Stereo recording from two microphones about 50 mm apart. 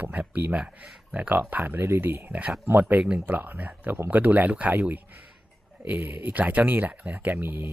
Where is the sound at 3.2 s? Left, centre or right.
Right.